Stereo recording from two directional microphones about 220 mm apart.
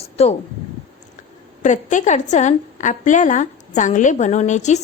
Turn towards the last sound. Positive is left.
turn(degrees=30)  # may be behind; listen again after turning